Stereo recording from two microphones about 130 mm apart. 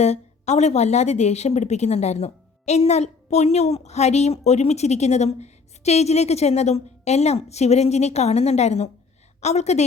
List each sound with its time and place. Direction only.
0.0 s speech: 60° left (ahead or behind)